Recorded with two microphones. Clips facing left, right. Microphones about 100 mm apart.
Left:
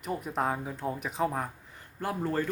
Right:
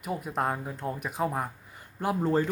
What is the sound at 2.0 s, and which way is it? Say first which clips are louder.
Speech: right 5 dB; 20° right (ahead or behind).